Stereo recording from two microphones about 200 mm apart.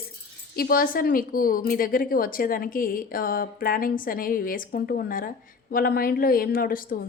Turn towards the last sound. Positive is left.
turn(degrees=45)  # may be behind; listen again after turning